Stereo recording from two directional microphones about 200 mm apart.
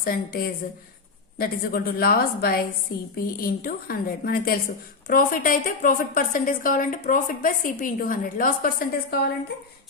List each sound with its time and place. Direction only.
0.0 s a woman's voice: 50° left (ahead or behind)